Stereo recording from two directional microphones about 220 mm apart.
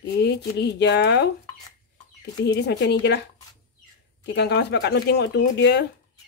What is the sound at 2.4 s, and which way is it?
Speech, 50° left (ahead or behind).